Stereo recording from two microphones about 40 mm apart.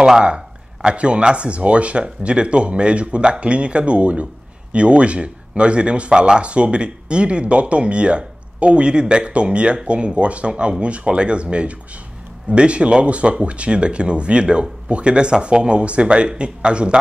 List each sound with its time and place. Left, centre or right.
0.8 s speech: right